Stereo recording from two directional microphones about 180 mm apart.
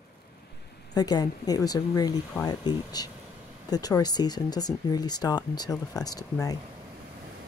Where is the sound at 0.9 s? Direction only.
20° left (ahead or behind).